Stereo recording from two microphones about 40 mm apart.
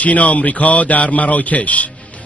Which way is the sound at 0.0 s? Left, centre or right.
Left.